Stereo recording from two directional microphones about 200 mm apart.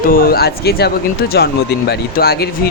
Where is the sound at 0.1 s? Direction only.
45° left (ahead or behind).